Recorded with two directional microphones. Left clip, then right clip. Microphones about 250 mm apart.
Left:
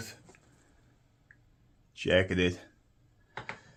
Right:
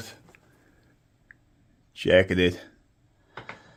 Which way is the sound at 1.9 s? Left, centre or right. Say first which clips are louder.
Right 7 dB; right.